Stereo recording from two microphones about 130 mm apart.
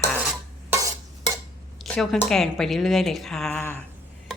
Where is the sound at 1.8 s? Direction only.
5° left (ahead or behind).